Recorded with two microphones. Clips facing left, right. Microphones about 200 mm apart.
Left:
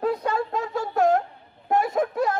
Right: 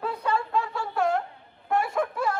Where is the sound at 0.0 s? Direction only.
40° left (ahead or behind).